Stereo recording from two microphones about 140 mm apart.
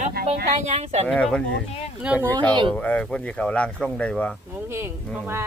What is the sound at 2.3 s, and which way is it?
Speech, 35° right (ahead or behind).